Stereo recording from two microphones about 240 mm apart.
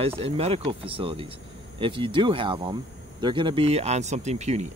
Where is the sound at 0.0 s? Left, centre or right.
Right.